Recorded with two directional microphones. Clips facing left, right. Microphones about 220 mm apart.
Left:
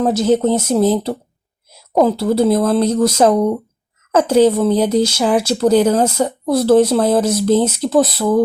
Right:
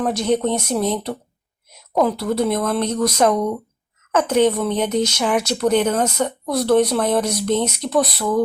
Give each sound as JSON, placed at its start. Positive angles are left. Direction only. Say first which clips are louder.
{"t": 0.0, "sound": "speech", "louder": "left 5 dB", "side_deg": 25}